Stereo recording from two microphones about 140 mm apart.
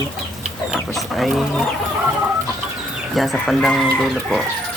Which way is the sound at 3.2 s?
Centre (ahead or behind).